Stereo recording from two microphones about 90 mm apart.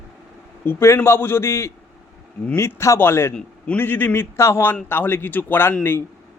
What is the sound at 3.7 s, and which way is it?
A man's voice, 25° left (ahead or behind).